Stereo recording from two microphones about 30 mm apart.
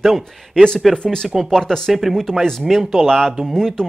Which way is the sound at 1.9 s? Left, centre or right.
Centre.